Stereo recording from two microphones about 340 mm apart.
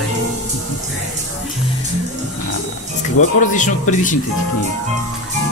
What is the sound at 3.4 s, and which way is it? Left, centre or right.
Speech, left.